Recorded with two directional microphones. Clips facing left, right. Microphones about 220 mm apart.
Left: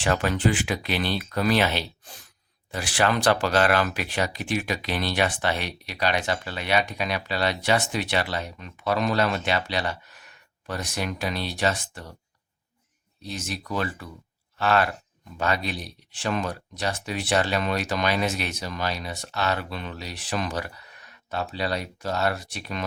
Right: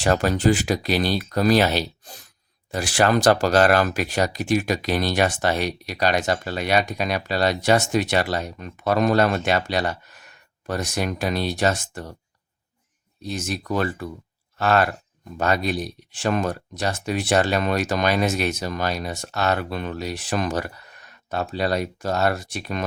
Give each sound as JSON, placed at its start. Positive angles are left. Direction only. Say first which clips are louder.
{"t": 0.0, "sound": "speech", "louder": "right 4 dB", "side_deg": -40}
{"t": 13.2, "sound": "speech", "louder": "right 6 dB", "side_deg": -45}